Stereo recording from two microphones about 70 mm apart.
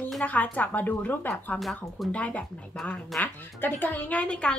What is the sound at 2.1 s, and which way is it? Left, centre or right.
Speech, centre.